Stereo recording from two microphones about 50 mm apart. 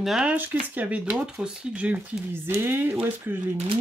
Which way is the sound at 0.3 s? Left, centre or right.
Right.